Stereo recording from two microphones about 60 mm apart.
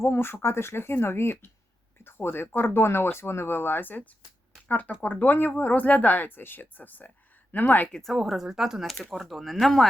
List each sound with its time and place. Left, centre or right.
0.0 s speech: left
7.9 s speech: centre